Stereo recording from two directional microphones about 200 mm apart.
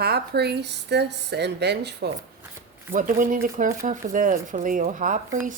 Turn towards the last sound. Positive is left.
turn(degrees=-40)  # may be behind; listen again after turning